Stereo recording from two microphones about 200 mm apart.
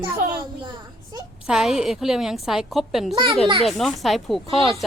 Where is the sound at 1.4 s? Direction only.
5° right (ahead or behind).